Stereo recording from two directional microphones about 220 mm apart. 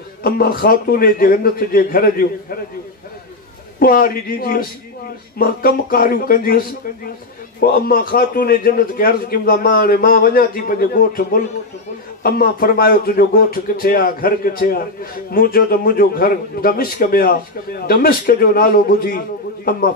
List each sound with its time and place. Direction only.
0.2 s a man's voice: 40° left (ahead or behind)
3.8 s a man's voice: 40° left (ahead or behind)
7.6 s a man's voice: 40° left (ahead or behind)